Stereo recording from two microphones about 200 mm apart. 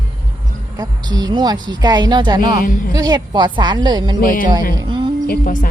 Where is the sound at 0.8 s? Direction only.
20° right (ahead or behind).